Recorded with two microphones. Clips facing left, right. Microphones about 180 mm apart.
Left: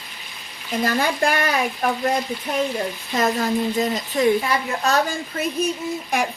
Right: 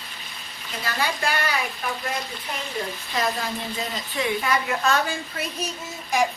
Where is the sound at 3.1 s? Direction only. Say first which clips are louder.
Left 6 dB; 45° left (ahead or behind).